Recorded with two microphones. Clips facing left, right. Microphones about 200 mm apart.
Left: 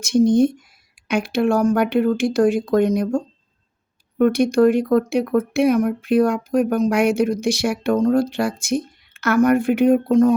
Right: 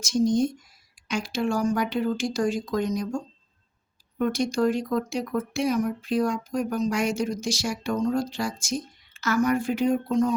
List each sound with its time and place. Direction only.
0.0 s speech: 60° left (ahead or behind)